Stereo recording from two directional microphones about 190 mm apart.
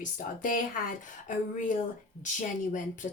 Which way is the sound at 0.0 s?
45° left (ahead or behind).